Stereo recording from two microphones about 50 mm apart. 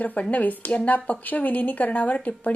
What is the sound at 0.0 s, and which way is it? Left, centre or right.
A woman's voice, left.